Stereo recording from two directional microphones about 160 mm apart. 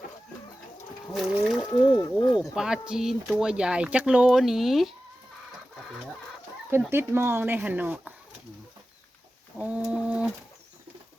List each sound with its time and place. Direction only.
1.1 s speech: centre (ahead or behind)
1.7 s speech: 25° left (ahead or behind)
2.4 s speech: 5° right (ahead or behind)
6.9 s speech: 15° right (ahead or behind)
9.6 s bird: 10° right (ahead or behind)